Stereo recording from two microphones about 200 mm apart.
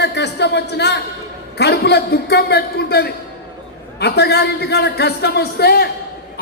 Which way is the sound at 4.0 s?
55° left (ahead or behind).